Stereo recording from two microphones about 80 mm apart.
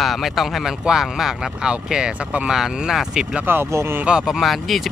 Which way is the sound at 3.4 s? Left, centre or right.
Right.